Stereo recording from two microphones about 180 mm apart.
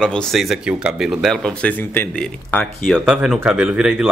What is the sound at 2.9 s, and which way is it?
Speech, 5° right (ahead or behind).